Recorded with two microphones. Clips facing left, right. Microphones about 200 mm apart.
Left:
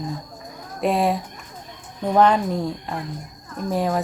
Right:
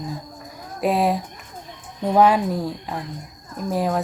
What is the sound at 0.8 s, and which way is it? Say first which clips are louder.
Speech: even; centre (ahead or behind).